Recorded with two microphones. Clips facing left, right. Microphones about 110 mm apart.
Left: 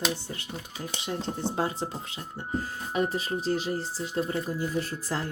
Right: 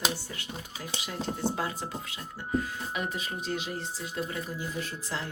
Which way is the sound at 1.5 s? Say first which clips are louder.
Left 4 dB; 30° left (ahead or behind).